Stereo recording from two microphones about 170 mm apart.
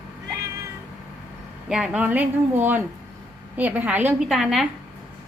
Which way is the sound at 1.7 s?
5° right (ahead or behind).